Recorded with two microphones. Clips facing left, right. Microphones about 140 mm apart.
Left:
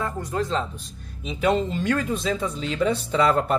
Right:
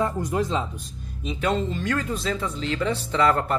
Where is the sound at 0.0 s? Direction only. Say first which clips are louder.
Right 3 dB; 15° right (ahead or behind).